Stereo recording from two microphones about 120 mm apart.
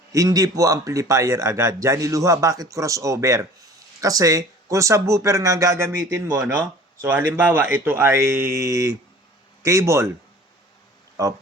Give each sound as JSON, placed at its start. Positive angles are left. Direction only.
{"t": 0.1, "sound": "speech", "side_deg": -30}
{"t": 6.4, "sound": "speech", "side_deg": -5}
{"t": 7.0, "sound": "speech", "side_deg": -15}